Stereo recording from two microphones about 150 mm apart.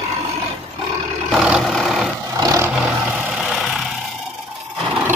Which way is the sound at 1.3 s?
5° right (ahead or behind).